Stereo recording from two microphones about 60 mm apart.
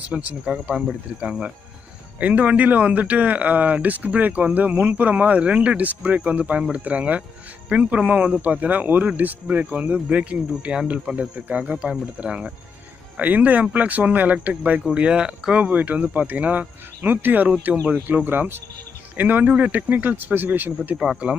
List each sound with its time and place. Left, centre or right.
0.0 s speech: right
0.5 s speech: centre
1.2 s speech: centre